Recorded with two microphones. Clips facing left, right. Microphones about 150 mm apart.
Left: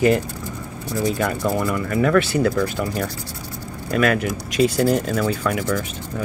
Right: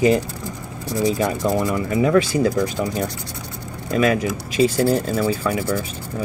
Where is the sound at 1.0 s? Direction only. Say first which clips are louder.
Right 2 dB; 20° right (ahead or behind).